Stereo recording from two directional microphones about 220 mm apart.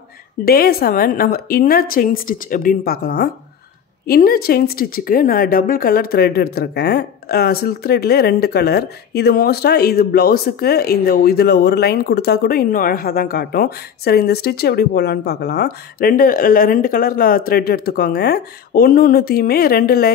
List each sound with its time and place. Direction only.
0.5 s a woman's voice: 45° left (ahead or behind)